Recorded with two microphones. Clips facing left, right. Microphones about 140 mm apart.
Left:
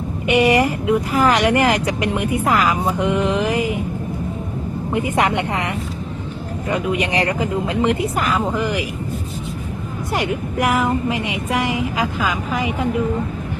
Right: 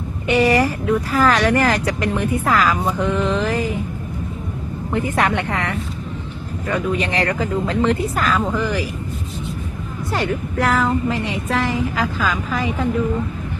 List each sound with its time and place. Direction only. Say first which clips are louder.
0.3 s speech: left 1 dB; 15° left (ahead or behind)
4.9 s speech: even; 15° left (ahead or behind)
10.1 s speech: even; 15° left (ahead or behind)